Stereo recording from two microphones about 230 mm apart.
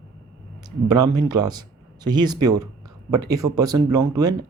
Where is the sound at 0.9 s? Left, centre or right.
Centre.